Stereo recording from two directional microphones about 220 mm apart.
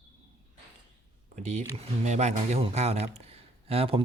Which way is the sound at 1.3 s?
30° right (ahead or behind).